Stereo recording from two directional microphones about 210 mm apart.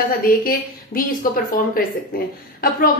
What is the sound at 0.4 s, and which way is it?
A woman's voice, 45° left (ahead or behind).